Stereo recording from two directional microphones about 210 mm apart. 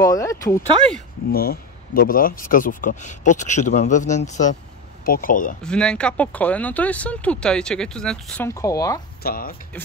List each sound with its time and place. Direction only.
0.0 s speech: 15° left (ahead or behind)
1.3 s speech: 45° left (ahead or behind)
5.6 s speech: 5° left (ahead or behind)
9.2 s speech: 45° left (ahead or behind)